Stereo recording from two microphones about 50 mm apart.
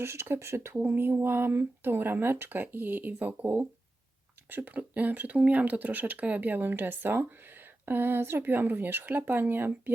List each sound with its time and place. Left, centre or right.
0.0 s speech: right